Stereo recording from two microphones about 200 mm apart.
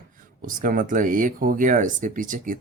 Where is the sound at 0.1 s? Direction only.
40° right (ahead or behind).